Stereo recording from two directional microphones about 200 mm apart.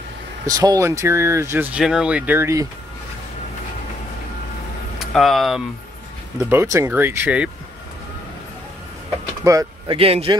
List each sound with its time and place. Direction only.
0.5 s speech: 20° right (ahead or behind)
4.9 s speech: centre (ahead or behind)
6.5 s speech: 15° right (ahead or behind)
9.4 s speech: 15° right (ahead or behind)
9.9 s a man's voice: 30° right (ahead or behind)